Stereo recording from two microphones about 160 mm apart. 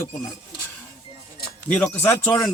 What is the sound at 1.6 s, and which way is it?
Speech, 10° left (ahead or behind).